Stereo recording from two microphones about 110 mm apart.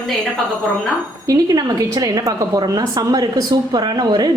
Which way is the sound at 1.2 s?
40° right (ahead or behind).